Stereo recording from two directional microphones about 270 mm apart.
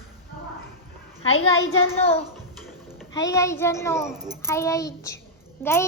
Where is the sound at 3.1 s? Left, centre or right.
Centre.